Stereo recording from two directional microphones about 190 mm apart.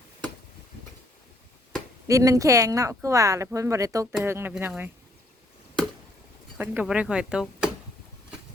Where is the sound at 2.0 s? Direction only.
15° right (ahead or behind).